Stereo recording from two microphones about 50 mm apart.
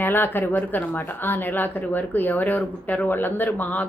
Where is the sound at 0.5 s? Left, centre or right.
Left.